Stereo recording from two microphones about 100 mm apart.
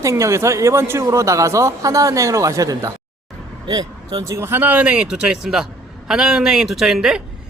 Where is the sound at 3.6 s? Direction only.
50° right (ahead or behind).